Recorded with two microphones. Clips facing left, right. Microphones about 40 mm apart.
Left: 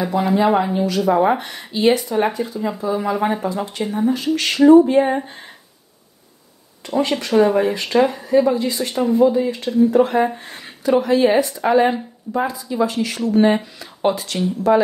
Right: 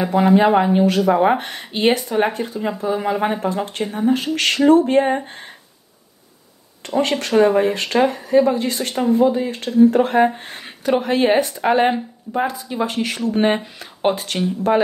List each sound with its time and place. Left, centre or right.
0.0 s speech: right
7.0 s speech: right
8.6 s speech: right